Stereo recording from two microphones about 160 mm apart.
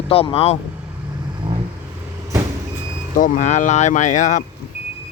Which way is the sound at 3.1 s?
55° left (ahead or behind).